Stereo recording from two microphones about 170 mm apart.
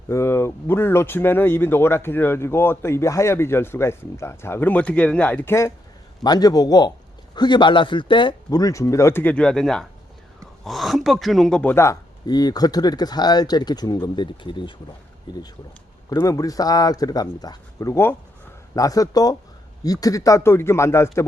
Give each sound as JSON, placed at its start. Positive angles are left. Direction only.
{"t": 0.1, "sound": "speech", "side_deg": 15}